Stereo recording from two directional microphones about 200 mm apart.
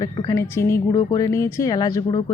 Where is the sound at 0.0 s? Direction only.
20° left (ahead or behind).